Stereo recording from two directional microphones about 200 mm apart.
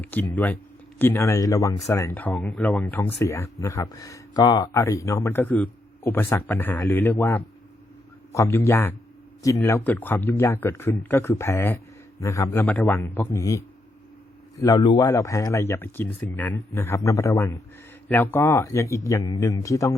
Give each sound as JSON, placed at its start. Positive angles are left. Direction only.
{"t": 0.0, "sound": "speech", "side_deg": 10}